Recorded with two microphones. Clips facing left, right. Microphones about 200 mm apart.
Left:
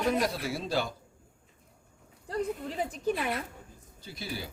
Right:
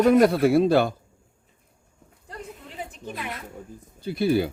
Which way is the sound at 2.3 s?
35° left (ahead or behind).